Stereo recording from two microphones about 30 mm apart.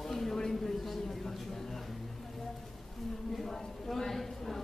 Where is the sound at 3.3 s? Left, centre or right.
Centre.